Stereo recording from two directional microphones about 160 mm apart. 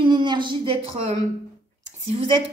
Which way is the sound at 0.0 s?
30° right (ahead or behind).